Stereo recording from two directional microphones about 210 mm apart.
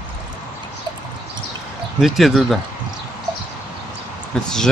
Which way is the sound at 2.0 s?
Centre (ahead or behind).